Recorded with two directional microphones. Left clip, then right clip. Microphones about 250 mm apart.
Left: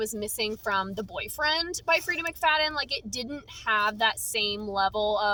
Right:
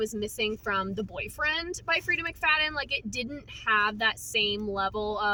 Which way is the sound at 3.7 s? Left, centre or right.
Centre.